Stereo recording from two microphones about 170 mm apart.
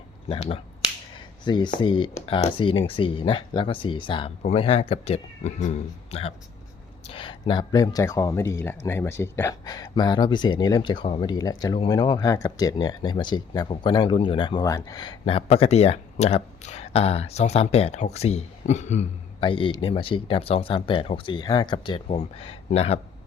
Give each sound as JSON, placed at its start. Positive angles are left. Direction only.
{"t": 0.3, "sound": "speech", "side_deg": 35}